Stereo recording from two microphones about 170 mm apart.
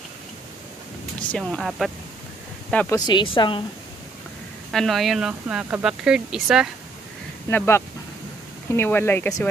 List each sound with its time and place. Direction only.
1.4 s speech: centre (ahead or behind)
3.1 s a woman's voice: 25° left (ahead or behind)
4.6 s speech: centre (ahead or behind)
7.4 s speech: 15° left (ahead or behind)